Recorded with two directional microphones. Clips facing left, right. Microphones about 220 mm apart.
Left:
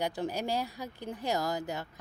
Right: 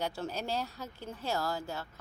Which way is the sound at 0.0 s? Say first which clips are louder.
Left 3 dB; 15° left (ahead or behind).